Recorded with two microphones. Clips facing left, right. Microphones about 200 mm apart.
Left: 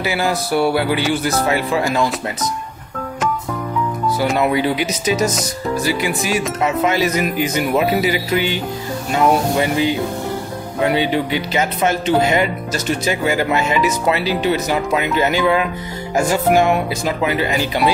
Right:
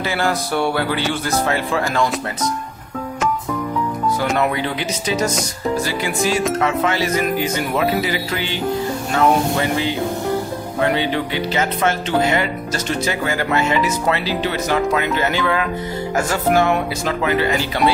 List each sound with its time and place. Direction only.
0.0 s speech: 10° left (ahead or behind)
4.4 s speech: 10° left (ahead or behind)